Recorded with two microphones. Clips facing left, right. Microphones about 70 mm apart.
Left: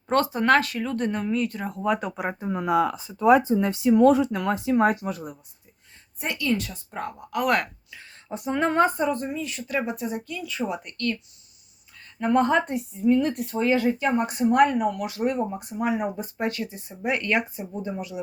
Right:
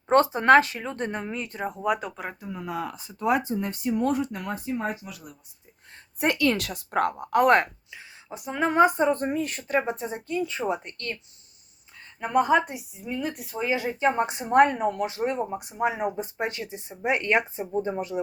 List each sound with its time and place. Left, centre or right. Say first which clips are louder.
0.1 s speech: right 3 dB; right
1.8 s speech: left 2 dB; centre
2.5 s speech: left 11 dB; left
3.7 s speech: left 9 dB; left
6.1 s a woman's voice: right 3 dB; right
7.3 s speech: right 4 dB; right
7.5 s speech: right 4 dB; right
8.3 s speech: left 2 dB; centre
8.8 s speech: right 4 dB; centre
9.0 s speech: right 2 dB; right
9.6 s speech: even; right
12.2 s speech: left 1 dB; centre
13.7 s speech: left 2 dB; centre; by 18.2 s right